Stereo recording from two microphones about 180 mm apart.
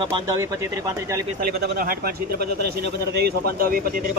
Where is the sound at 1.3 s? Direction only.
60° right (ahead or behind).